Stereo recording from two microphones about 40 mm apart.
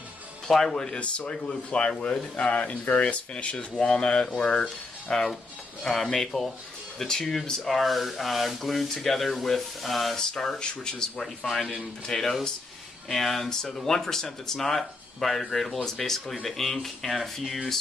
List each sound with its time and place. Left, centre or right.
0.5 s speech: centre
0.9 s speech: left; by 10.1 s centre
10.1 s speech: centre